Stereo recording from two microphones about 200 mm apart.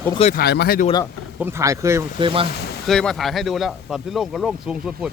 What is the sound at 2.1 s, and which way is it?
Speech, 25° right (ahead or behind).